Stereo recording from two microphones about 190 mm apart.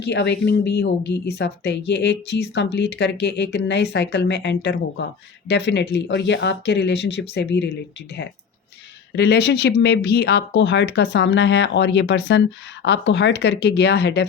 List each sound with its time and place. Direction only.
0.0 s speech: 65° left (ahead or behind)
9.1 s speech: 60° left (ahead or behind)